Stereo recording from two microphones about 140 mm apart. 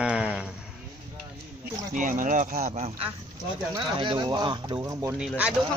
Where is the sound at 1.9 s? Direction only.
70° right (ahead or behind); by 3.1 s 50° right (ahead or behind).